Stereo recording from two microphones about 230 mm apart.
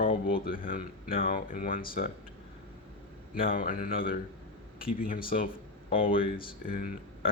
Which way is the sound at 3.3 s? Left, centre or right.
Left.